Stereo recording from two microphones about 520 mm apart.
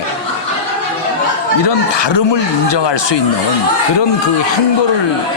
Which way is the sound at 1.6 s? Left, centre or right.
Left.